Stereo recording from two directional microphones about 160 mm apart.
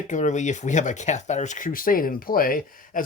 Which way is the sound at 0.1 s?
50° left (ahead or behind).